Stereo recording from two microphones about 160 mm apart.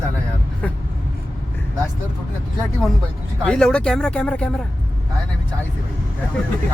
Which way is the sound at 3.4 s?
5° left (ahead or behind).